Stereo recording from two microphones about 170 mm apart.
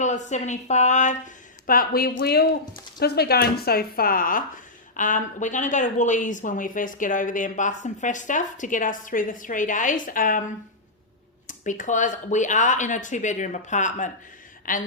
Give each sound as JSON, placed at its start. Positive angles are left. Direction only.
{"t": 0.0, "sound": "speech", "side_deg": 45}
{"t": 1.6, "sound": "speech", "side_deg": 55}
{"t": 11.4, "sound": "a woman's voice", "side_deg": 50}